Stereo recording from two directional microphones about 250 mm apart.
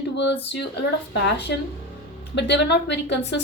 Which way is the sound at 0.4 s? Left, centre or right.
Left.